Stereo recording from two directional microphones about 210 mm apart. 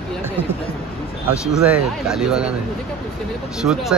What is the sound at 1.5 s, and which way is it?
Speech, centre (ahead or behind).